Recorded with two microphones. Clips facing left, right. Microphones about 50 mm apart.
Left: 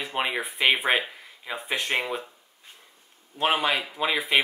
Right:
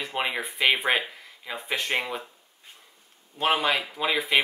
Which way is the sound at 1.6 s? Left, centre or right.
Centre.